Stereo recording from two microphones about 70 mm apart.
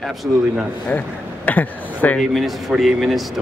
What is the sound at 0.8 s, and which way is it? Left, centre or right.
Speech, left.